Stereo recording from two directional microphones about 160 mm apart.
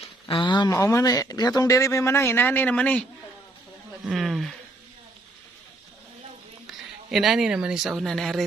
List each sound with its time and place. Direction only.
0.3 s speech: 30° left (ahead or behind); by 4.5 s centre (ahead or behind)
7.1 s speech: centre (ahead or behind)